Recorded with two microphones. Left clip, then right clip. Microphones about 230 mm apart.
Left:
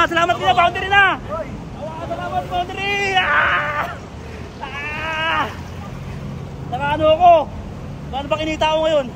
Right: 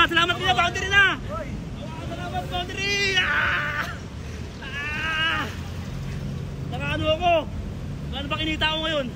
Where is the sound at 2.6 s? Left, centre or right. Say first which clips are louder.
Left 4 dB; centre.